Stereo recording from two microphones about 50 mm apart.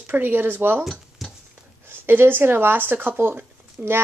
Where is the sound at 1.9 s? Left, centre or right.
Right.